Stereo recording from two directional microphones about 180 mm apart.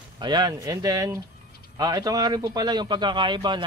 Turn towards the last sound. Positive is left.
turn(degrees=-25)  # may be behind; listen again after turning